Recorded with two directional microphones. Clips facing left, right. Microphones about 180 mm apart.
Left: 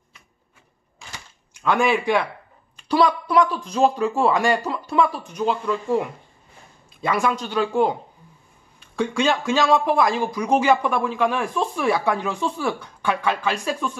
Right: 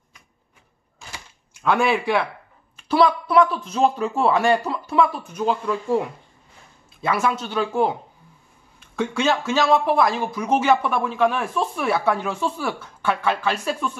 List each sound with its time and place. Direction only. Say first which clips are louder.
1.5 s speech: even; 5° right (ahead or behind)
7.0 s speech: even; 5° right (ahead or behind)
13.2 s speech: right 1 dB; 10° left (ahead or behind)
13.7 s speech: even; 5° right (ahead or behind)